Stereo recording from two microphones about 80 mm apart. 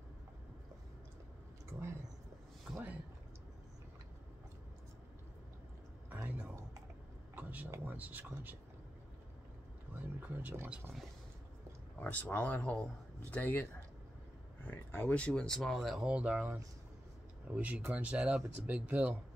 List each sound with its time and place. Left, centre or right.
1.7 s a sound: right
2.7 s speech: centre
6.2 s typing: centre
7.3 s a sound: right
7.8 s speech: right
9.9 s a sound: right
12.0 s speech: left; by 16.0 s centre
16.0 s speech: centre
17.5 s speech: centre